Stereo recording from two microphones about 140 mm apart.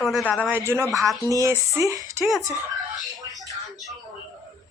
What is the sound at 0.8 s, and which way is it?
Speech, centre (ahead or behind).